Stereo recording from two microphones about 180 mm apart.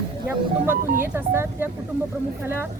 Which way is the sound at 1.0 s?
15° right (ahead or behind).